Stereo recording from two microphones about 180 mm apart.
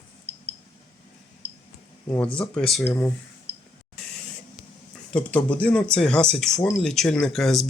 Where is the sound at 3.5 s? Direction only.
70° right (ahead or behind).